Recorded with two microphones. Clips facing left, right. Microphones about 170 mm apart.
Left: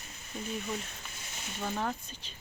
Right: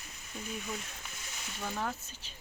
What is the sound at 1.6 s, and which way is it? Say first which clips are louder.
Speech: left 3 dB; 10° left (ahead or behind).